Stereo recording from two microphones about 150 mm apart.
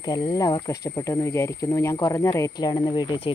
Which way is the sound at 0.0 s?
25° left (ahead or behind).